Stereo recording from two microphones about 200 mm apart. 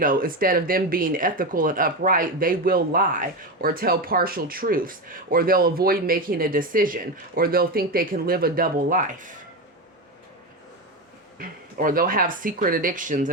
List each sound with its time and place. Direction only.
0.0 s speech: 45° right (ahead or behind)
11.3 s speech: 45° right (ahead or behind)